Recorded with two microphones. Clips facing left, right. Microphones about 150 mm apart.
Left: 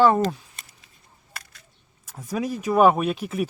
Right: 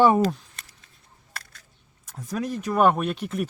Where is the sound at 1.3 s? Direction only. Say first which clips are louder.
Right 1 dB; centre (ahead or behind).